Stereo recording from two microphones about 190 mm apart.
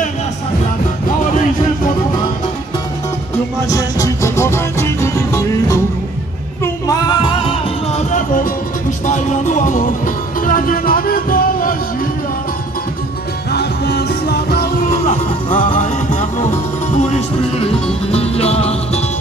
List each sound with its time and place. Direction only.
3.6 s music: 20° left (ahead or behind)
7.9 s music: 40° left (ahead or behind)
13.5 s music: 60° left (ahead or behind)
15.0 s music: 25° left (ahead or behind)
15.7 s music: 40° left (ahead or behind)